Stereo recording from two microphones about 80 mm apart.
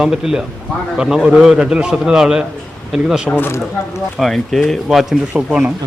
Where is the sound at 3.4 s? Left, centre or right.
Left.